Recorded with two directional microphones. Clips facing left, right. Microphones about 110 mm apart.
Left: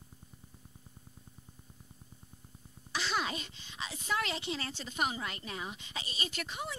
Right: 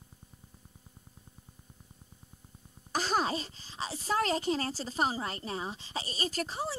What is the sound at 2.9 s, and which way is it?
Speech, 40° right (ahead or behind).